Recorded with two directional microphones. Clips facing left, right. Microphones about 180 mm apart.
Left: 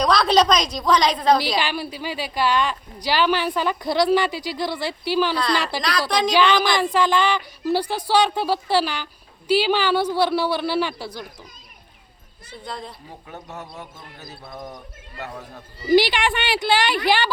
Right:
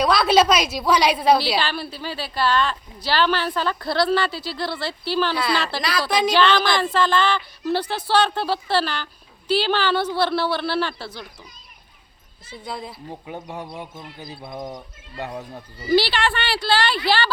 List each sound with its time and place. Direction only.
0.0 s a woman's voice: 5° right (ahead or behind)
1.5 s a woman's voice: 15° left (ahead or behind)
6.1 s speech: 5° right (ahead or behind)
6.3 s a woman's voice: 15° left (ahead or behind)
12.6 s a woman's voice: 5° right (ahead or behind)
15.9 s a woman's voice: 15° left (ahead or behind)